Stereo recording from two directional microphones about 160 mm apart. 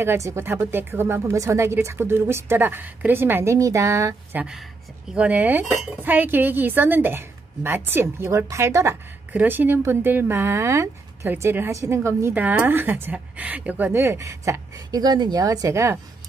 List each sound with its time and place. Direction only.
0.0 s a woman's voice: 15° right (ahead or behind)